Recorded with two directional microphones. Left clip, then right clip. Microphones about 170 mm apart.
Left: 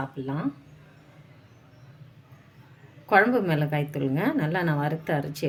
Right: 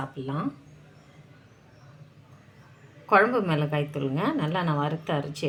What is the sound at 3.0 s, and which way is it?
A woman's voice, 30° left (ahead or behind).